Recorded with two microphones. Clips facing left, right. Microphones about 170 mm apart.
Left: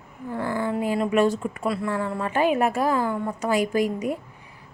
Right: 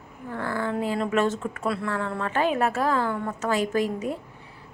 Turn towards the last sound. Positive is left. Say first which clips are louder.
# left 2 dB
turn(degrees=10)  # may be behind; listen again after turning